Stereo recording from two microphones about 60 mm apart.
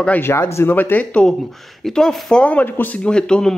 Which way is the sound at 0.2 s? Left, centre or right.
Left.